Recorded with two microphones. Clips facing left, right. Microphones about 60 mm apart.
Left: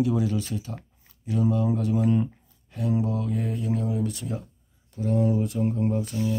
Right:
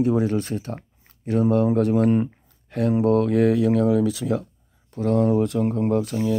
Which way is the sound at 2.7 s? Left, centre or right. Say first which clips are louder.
Right 8 dB; right.